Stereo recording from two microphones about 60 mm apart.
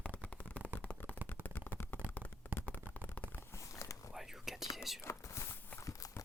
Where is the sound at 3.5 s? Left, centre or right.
Left.